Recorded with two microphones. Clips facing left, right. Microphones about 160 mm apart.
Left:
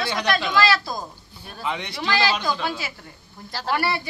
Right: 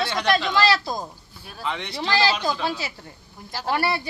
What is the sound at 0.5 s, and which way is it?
Speech, 30° right (ahead or behind).